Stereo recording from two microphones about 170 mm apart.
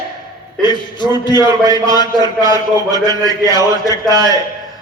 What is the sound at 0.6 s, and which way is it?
Speech, 25° left (ahead or behind).